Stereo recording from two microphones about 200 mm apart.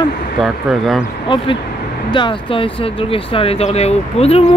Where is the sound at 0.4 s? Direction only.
Centre (ahead or behind).